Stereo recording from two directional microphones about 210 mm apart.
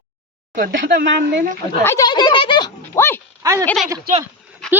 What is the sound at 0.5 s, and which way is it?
Speech, 40° right (ahead or behind).